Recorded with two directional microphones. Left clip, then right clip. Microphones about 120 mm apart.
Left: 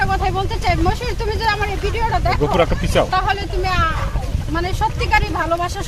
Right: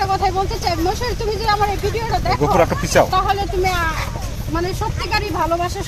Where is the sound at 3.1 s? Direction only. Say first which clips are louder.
Right 1 dB; 20° left (ahead or behind).